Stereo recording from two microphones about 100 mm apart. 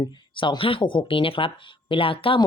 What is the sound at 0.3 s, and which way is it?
Speech, 55° left (ahead or behind).